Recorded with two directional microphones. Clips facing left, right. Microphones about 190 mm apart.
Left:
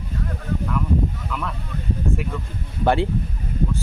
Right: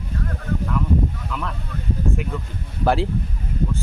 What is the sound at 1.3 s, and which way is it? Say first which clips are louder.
Speech: even; centre (ahead or behind).